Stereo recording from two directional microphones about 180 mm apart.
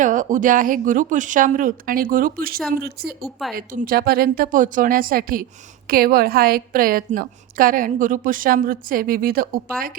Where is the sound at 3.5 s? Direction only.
50° right (ahead or behind).